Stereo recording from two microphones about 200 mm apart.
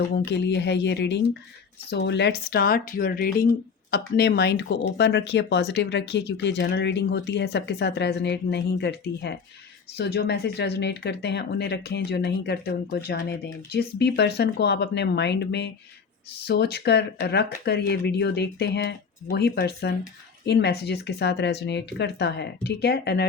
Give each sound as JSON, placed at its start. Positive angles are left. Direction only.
{"t": 0.3, "sound": "speech", "side_deg": 60}